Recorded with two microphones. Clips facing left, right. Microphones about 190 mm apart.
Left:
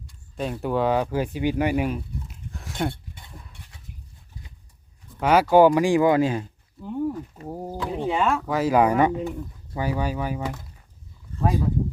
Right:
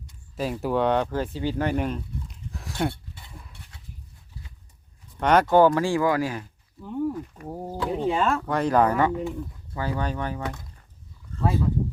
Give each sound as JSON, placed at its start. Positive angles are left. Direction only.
{"t": 0.3, "sound": "speech", "side_deg": -5}
{"t": 5.2, "sound": "speech", "side_deg": 5}